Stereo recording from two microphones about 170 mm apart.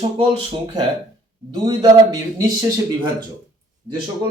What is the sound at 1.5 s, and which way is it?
A man's voice, 25° right (ahead or behind).